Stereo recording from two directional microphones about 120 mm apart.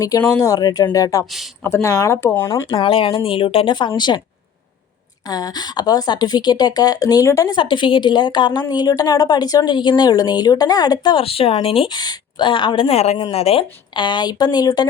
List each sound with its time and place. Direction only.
0.0 s a woman's voice: 30° left (ahead or behind)
1.2 s speech: centre (ahead or behind)
1.6 s speech: 25° left (ahead or behind)
2.6 s speech: 45° left (ahead or behind)
5.2 s a woman's voice: 30° left (ahead or behind)
7.5 s a woman's voice: 40° left (ahead or behind)
11.9 s a woman's voice: 40° left (ahead or behind)